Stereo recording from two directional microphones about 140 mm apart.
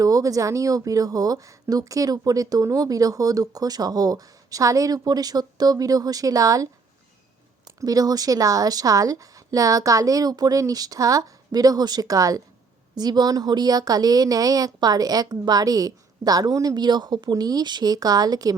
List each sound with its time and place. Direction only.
0.0 s speech: 25° right (ahead or behind)
7.8 s speech: 25° right (ahead or behind)